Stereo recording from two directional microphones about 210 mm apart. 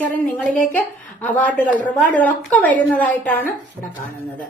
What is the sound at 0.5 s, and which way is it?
A woman's voice, 10° left (ahead or behind).